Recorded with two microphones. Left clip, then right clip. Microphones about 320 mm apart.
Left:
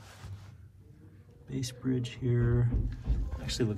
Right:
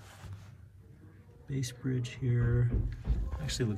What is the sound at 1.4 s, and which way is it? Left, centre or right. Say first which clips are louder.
Speech: left 3 dB; centre.